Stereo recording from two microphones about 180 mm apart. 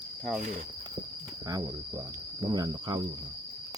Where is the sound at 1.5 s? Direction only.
20° right (ahead or behind).